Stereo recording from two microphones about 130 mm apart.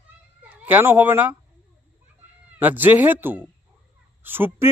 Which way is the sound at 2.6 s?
15° right (ahead or behind).